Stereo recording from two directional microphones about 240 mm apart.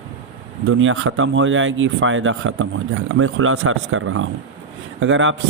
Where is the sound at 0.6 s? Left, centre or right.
Right.